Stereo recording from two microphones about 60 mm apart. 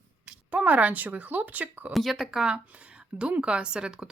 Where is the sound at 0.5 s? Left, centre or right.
Right.